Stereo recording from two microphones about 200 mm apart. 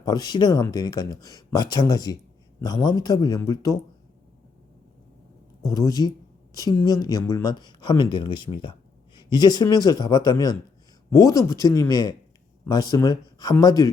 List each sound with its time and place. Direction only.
0.0 s speech: 20° left (ahead or behind)
5.6 s a woman's voice: 15° left (ahead or behind)